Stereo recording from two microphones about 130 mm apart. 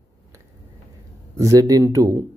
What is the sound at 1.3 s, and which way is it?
Speech, 25° right (ahead or behind).